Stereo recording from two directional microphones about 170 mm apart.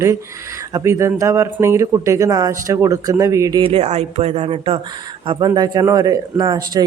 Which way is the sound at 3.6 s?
35° right (ahead or behind).